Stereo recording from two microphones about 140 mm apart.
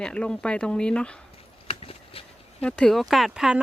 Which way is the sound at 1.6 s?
45° left (ahead or behind).